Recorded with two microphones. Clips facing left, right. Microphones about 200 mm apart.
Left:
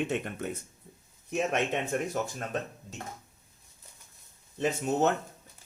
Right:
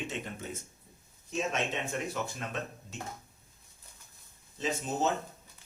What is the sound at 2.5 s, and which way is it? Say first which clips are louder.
Speech: left 5 dB; 45° left (ahead or behind).